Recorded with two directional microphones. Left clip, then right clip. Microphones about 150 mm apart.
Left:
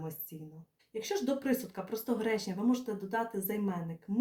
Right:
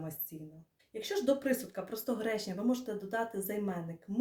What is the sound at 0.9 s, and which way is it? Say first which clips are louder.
Speech: right 2 dB; 25° right (ahead or behind).